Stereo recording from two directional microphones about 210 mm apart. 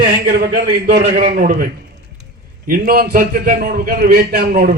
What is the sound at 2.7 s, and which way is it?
A man's voice, 45° right (ahead or behind).